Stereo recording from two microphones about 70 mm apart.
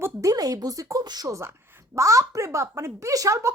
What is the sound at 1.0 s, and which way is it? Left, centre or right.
Speech, right.